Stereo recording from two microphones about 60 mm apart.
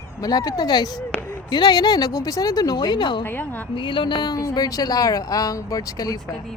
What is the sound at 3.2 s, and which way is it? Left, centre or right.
Speech, left.